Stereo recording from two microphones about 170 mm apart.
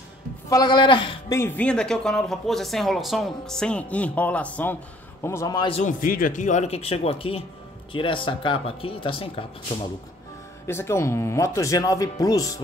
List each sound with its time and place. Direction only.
0.5 s speech: 25° left (ahead or behind)
1.4 s a man's voice: 5° left (ahead or behind)
5.7 s a man's voice: 45° left (ahead or behind)
10.7 s speech: 15° left (ahead or behind)